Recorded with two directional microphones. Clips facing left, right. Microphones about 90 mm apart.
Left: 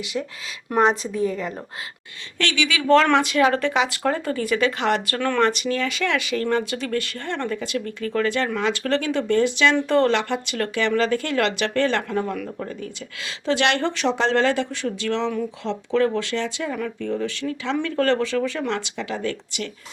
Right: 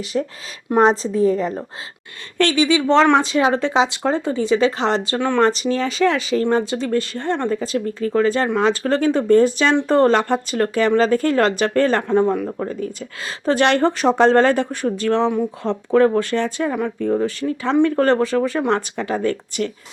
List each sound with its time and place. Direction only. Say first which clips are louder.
0.0 s speech: right 5 dB; 40° right (ahead or behind); by 5.4 s 20° right (ahead or behind)
5.4 s speech: right 4 dB; 30° right (ahead or behind)
12.1 s speech: right 8 dB; 30° right (ahead or behind)
12.5 s speech: right 6 dB; 40° right (ahead or behind)